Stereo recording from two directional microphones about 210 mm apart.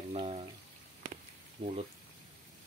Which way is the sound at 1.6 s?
25° right (ahead or behind).